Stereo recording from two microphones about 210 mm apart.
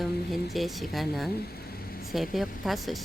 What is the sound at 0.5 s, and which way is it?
Mantra, centre (ahead or behind).